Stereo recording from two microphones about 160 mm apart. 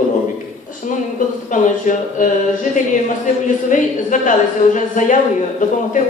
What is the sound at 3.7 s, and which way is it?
A woman's voice, 55° left (ahead or behind).